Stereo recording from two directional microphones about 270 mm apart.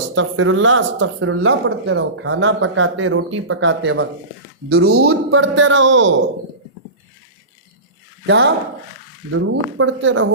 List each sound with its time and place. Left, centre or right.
0.1 s speech: right
8.3 s speech: right